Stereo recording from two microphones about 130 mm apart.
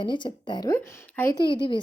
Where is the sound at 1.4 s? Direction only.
35° left (ahead or behind).